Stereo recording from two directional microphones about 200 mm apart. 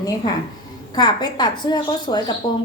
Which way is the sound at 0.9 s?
20° left (ahead or behind).